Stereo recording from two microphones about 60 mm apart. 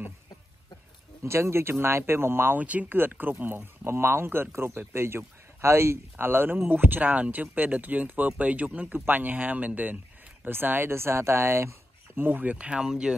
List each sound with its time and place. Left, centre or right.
1.2 s speech: right
2.6 s speech: right
12.2 s speech: right
12.5 s speech: centre